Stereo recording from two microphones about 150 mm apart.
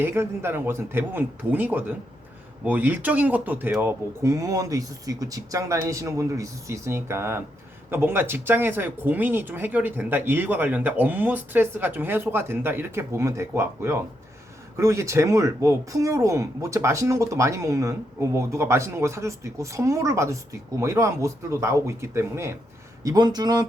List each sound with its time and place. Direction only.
0.0 s speech: 15° right (ahead or behind)